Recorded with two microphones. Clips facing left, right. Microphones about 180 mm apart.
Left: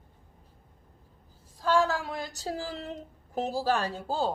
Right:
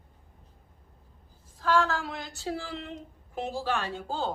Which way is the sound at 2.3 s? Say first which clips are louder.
Even; 40° left (ahead or behind).